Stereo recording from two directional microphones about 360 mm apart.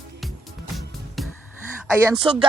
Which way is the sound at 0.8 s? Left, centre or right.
Centre.